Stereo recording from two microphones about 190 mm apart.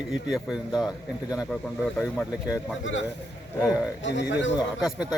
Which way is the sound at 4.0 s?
70° left (ahead or behind).